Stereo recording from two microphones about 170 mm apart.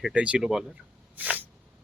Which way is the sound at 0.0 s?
5° right (ahead or behind).